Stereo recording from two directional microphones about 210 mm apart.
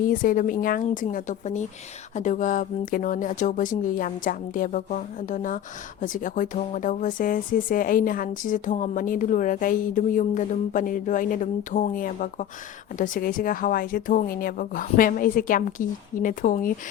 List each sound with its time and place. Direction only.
0.1 s speech: 40° left (ahead or behind)